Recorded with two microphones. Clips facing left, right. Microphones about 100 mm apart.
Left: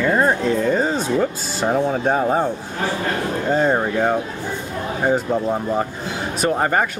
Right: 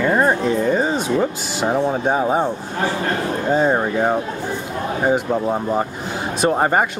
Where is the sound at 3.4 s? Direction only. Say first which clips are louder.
Right 1 dB; 10° right (ahead or behind).